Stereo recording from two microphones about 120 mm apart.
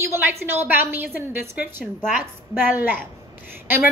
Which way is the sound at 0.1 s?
20° right (ahead or behind).